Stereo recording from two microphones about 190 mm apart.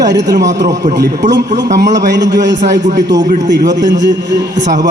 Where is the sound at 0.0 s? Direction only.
65° right (ahead or behind).